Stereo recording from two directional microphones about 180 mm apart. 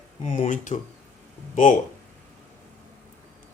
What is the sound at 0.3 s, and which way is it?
Speech, 45° left (ahead or behind).